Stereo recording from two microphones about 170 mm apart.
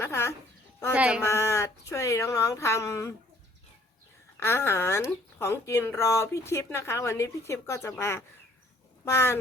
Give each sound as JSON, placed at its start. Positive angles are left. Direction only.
{"t": 0.0, "sound": "a sound", "side_deg": 15}
{"t": 0.9, "sound": "speech", "side_deg": -5}
{"t": 1.2, "sound": "speech", "side_deg": 15}
{"t": 4.4, "sound": "speech", "side_deg": 15}